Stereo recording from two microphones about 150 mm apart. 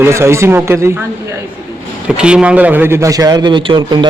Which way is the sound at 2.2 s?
5° right (ahead or behind).